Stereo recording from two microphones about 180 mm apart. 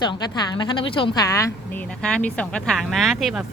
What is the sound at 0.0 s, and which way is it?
Speech, 25° left (ahead or behind).